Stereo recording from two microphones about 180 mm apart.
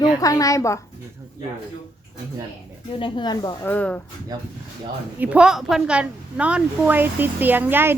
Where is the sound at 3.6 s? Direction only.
10° left (ahead or behind).